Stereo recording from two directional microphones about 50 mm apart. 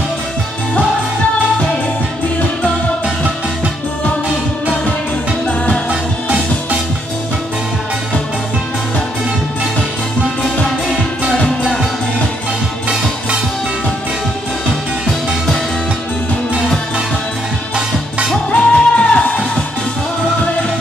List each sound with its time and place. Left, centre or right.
5.9 s music: right
11.4 s music: centre
15.0 s music: centre
18.5 s music: left